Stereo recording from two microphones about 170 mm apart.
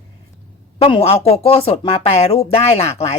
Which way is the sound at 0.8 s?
35° left (ahead or behind).